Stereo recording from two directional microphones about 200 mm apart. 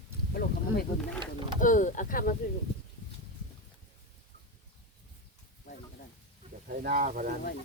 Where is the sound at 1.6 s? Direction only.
40° left (ahead or behind).